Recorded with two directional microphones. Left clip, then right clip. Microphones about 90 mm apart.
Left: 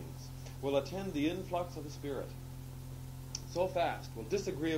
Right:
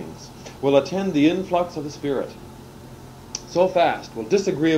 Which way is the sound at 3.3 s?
35° left (ahead or behind).